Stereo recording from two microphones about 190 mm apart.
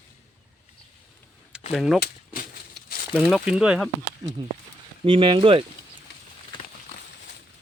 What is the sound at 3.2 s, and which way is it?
Speech, 5° right (ahead or behind).